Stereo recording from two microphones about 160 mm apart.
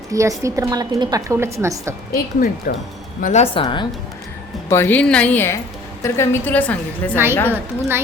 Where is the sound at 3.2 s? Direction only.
45° left (ahead or behind).